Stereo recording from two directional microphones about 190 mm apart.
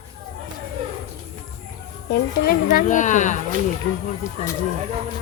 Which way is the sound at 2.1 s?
50° left (ahead or behind).